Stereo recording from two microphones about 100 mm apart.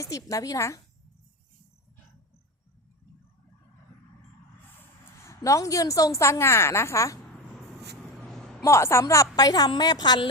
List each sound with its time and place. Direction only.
0.0 s a woman's voice: 35° left (ahead or behind)
5.2 s a woman's voice: 30° left (ahead or behind)
8.2 s a sound: 5° left (ahead or behind)
8.6 s a woman's voice: 25° left (ahead or behind); by 10.2 s 45° left (ahead or behind)